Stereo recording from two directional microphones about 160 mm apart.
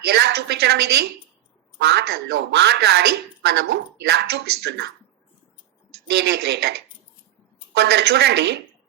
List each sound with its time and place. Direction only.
0.1 s a woman's voice: 90° right
6.1 s a woman's voice: 90° right